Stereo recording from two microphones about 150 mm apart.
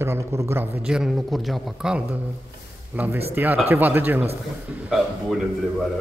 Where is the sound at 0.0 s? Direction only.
20° right (ahead or behind).